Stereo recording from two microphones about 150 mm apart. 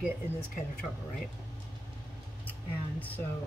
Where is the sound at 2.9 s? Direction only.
10° left (ahead or behind).